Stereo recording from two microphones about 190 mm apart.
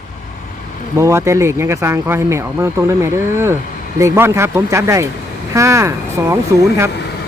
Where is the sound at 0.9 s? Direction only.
15° right (ahead or behind).